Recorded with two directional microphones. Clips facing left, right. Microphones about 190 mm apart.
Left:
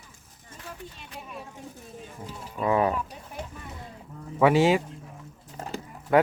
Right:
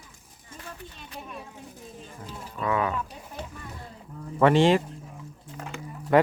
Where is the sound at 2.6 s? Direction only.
30° left (ahead or behind).